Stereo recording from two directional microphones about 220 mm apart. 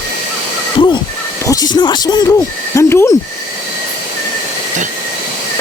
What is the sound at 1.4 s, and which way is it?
Speech, 15° left (ahead or behind).